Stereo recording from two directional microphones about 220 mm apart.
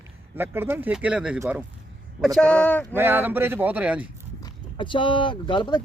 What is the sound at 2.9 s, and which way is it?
Speech, 10° right (ahead or behind).